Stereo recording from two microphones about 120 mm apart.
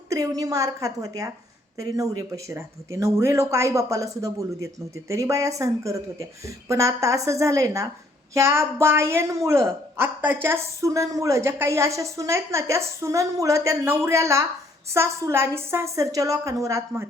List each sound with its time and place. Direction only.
0.1 s a woman's voice: 30° right (ahead or behind)